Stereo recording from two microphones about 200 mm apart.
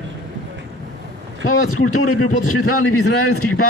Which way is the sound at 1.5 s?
90° left.